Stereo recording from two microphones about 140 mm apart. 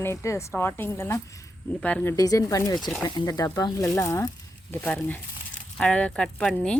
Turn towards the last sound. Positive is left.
turn(degrees=5)  # may be behind; listen again after turning